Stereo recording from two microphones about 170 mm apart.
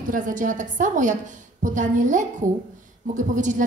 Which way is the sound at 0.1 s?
50° right (ahead or behind).